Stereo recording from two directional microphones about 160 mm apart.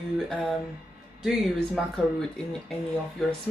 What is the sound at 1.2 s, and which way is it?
Speech, centre (ahead or behind).